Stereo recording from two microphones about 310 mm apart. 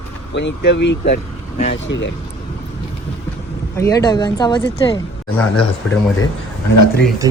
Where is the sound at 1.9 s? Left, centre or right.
Left.